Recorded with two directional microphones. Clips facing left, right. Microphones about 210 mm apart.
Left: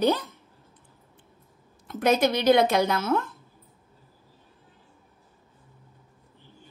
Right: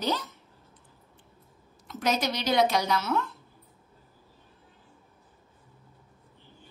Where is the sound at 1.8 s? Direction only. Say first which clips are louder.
Left 6 dB; 55° left (ahead or behind).